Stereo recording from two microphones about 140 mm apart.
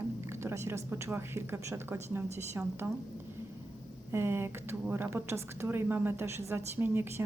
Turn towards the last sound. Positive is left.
turn(degrees=-15)  # may be behind; listen again after turning